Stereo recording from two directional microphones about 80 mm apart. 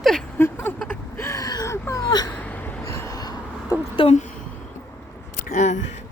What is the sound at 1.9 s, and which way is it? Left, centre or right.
Whimper, left.